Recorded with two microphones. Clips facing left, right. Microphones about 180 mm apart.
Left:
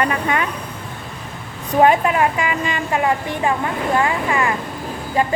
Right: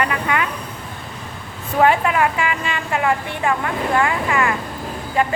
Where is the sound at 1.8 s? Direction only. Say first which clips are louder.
Left 1 dB; 25° left (ahead or behind).